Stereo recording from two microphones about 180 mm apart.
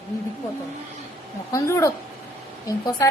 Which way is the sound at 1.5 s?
15° left (ahead or behind).